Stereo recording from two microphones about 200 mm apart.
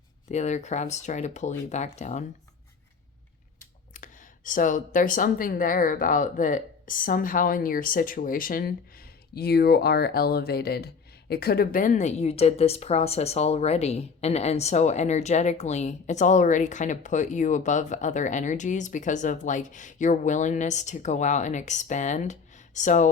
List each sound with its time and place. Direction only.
0.3 s a woman's voice: 35° left (ahead or behind)
3.9 s a woman's voice: 40° left (ahead or behind)